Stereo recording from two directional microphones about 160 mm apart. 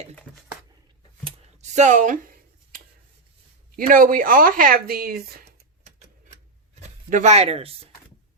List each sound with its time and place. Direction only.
1.2 s a sound: 45° right (ahead or behind); by 2.8 s 60° right (ahead or behind)
3.8 s speech: 60° right (ahead or behind)
5.5 s tick-tock: 45° right (ahead or behind)
6.7 s speech: 50° right (ahead or behind)